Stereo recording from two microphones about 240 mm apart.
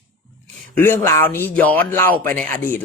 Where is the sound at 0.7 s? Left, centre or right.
Centre.